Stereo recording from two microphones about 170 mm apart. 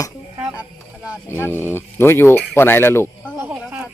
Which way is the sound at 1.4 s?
15° left (ahead or behind).